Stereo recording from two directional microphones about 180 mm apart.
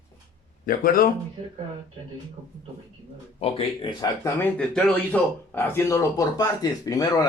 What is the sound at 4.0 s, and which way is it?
Speech, 10° left (ahead or behind).